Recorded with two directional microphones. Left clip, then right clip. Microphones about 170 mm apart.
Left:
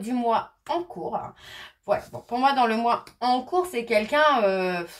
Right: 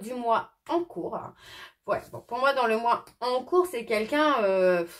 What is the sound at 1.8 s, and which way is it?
Speech, 35° right (ahead or behind).